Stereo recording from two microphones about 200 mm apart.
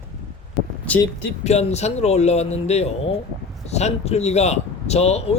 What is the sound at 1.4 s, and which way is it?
Speech, 30° left (ahead or behind).